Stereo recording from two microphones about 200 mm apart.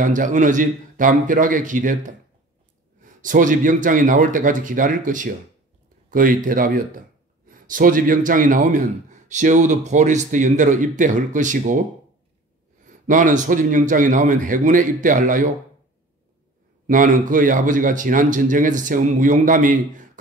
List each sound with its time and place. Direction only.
0.0 s a man's voice: 40° right (ahead or behind)
13.0 s a man's voice: 40° right (ahead or behind)
16.8 s a man's voice: 40° right (ahead or behind)